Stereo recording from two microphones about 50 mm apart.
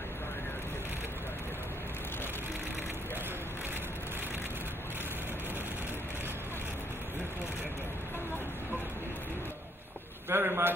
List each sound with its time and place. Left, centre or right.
10.3 s a man's voice: right